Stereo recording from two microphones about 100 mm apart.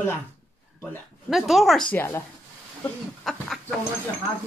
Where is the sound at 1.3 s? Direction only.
Centre (ahead or behind).